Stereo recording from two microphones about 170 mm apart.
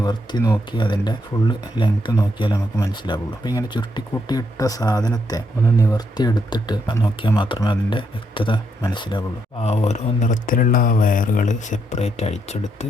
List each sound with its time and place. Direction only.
0.0 s speech: 25° left (ahead or behind); by 12.9 s 40° left (ahead or behind)